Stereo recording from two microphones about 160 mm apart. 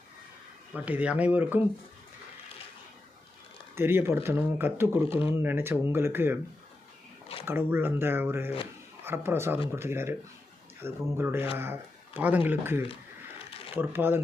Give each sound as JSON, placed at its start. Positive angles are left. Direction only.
{"t": 0.7, "sound": "speech", "side_deg": -10}
{"t": 3.8, "sound": "speech", "side_deg": -15}
{"t": 7.4, "sound": "speech", "side_deg": -15}